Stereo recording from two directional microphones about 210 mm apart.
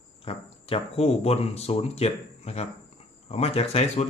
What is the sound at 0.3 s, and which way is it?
Speech, 30° left (ahead or behind).